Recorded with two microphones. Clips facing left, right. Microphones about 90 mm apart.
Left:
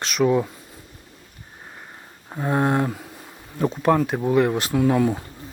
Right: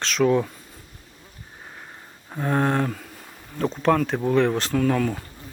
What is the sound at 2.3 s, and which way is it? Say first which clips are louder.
Speech: left 1 dB; 10° left (ahead or behind).